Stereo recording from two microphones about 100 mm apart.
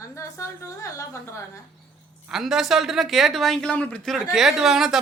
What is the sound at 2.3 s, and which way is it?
Speech, 5° right (ahead or behind).